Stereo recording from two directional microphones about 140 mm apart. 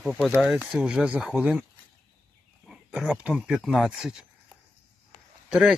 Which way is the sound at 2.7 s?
5° right (ahead or behind).